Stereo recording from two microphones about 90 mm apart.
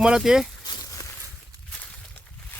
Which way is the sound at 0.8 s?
40° left (ahead or behind).